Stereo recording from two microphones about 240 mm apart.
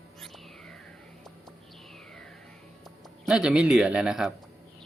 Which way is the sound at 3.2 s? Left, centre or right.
Centre.